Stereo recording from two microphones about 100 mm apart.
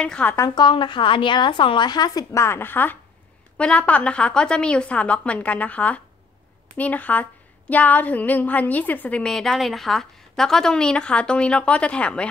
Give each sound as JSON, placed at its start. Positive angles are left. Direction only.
{"t": 0.0, "sound": "a woman's voice", "side_deg": 10}
{"t": 0.6, "sound": "a woman's voice", "side_deg": 55}
{"t": 2.3, "sound": "a woman's voice", "side_deg": 25}